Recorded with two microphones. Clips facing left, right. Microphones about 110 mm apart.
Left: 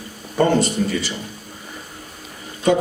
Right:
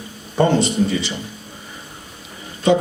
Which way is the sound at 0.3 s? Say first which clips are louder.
Right 1 dB; 50° left (ahead or behind).